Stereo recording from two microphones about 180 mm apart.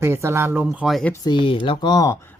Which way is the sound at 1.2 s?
25° left (ahead or behind).